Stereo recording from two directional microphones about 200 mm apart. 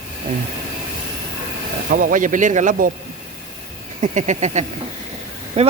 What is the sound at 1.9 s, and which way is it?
Speech, 40° right (ahead or behind).